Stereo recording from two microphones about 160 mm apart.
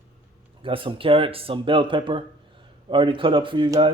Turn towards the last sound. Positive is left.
turn(degrees=-25)  # may be behind; listen again after turning